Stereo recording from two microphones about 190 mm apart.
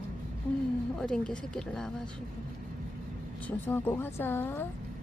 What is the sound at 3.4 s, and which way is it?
A woman's voice, 10° left (ahead or behind).